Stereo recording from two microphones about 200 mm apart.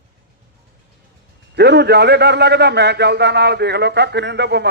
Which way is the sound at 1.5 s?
55° right (ahead or behind).